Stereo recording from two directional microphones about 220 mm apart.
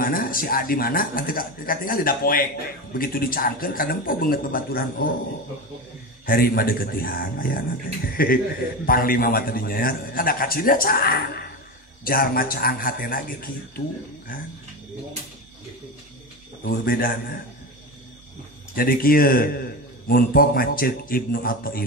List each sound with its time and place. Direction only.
0.0 s a man's voice: 40° left (ahead or behind)
6.2 s a man's voice: 40° left (ahead or behind)
16.6 s a man's voice: 40° left (ahead or behind)
18.8 s a man's voice: 40° left (ahead or behind)